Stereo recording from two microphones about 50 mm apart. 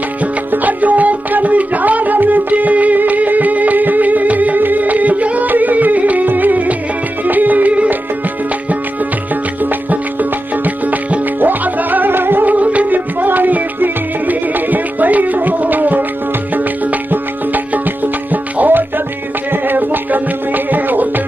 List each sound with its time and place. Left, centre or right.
0.2 s music: right
10.6 s music: right
18.0 s music: right